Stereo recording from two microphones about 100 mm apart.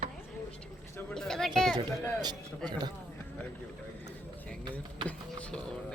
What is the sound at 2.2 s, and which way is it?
Speech, 45° right (ahead or behind).